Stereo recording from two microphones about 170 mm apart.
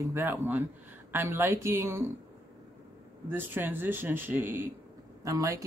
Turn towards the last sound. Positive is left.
turn(degrees=-20)  # may be behind; listen again after turning